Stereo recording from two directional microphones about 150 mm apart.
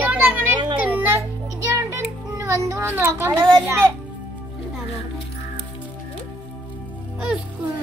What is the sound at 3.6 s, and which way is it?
Speech, 20° right (ahead or behind).